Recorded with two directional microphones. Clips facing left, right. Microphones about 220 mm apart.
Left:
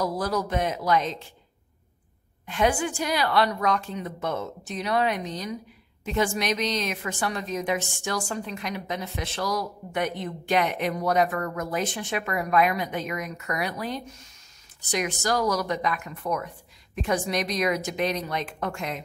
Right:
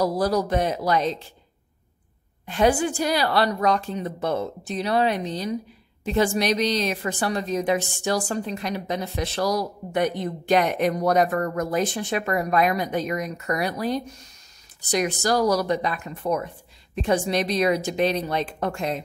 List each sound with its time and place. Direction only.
0.0 s a woman's voice: 35° right (ahead or behind)
2.4 s a woman's voice: 35° right (ahead or behind)